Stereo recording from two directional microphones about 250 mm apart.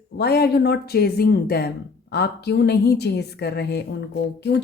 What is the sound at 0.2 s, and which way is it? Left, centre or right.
Speech, left.